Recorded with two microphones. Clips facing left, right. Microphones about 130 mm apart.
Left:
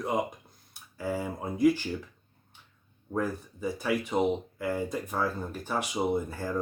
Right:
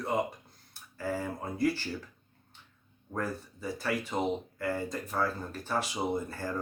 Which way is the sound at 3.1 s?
15° left (ahead or behind).